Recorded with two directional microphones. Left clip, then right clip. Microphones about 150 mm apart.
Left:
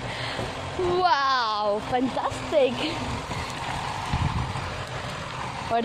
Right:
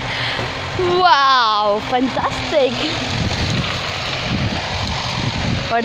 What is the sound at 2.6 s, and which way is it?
Speech, 5° left (ahead or behind).